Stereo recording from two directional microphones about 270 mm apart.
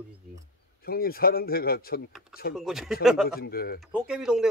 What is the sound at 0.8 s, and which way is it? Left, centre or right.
Speech, left.